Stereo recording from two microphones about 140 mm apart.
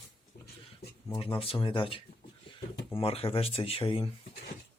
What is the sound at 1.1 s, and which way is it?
Speech, 40° left (ahead or behind).